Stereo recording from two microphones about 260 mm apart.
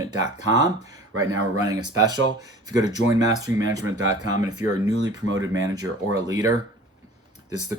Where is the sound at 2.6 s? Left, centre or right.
Centre.